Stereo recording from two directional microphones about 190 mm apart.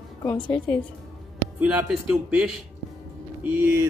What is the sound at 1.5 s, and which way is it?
A man's voice, 5° right (ahead or behind).